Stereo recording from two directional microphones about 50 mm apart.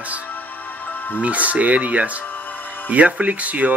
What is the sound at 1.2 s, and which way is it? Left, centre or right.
A man's voice, right.